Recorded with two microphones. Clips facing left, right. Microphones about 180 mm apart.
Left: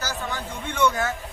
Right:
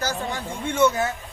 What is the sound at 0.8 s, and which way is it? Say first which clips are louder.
Speech: right 1 dB; 20° right (ahead or behind).